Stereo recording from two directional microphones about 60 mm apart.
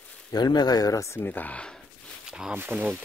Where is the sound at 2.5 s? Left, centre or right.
Right.